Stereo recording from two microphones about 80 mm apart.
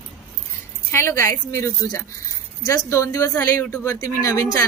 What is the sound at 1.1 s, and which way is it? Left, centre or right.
A woman's voice, left.